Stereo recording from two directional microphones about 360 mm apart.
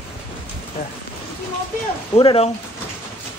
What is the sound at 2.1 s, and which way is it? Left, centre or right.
Speech, centre.